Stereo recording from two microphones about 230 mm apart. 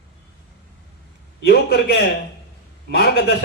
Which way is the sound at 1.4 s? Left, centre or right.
Left.